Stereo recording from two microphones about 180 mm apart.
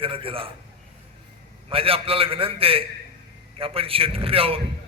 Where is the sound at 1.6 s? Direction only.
30° right (ahead or behind).